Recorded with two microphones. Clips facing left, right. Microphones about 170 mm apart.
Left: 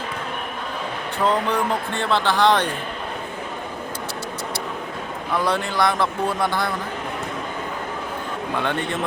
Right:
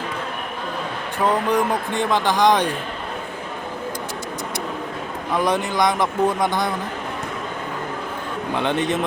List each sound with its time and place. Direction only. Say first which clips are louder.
1.2 s speech: right 2 dB; 10° right (ahead or behind)
5.3 s speech: right 2 dB; 15° right (ahead or behind)
8.5 s a man's voice: right 4 dB; 20° right (ahead or behind)